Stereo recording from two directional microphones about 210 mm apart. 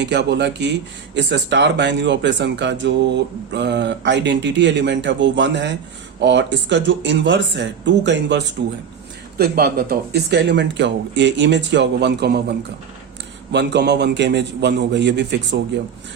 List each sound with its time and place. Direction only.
0.0 s speech: 55° right (ahead or behind)